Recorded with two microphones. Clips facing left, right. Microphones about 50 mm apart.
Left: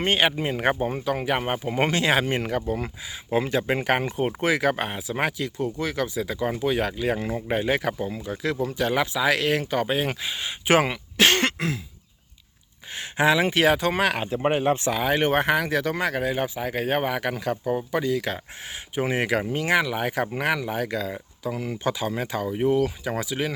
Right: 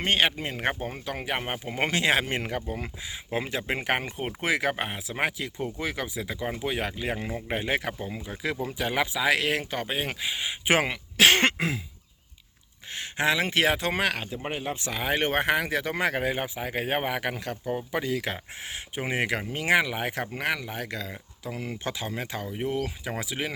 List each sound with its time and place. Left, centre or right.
0.0 s speech: centre
11.3 s cough: centre
12.9 s speech: centre
14.4 s speech: left
14.9 s speech: centre
16.0 s speech: right
16.4 s speech: centre
20.3 s speech: centre